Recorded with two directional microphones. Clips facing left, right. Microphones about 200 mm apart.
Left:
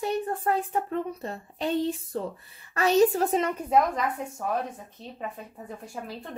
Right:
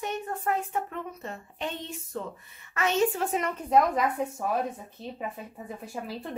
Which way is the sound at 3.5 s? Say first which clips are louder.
Even; 10° left (ahead or behind).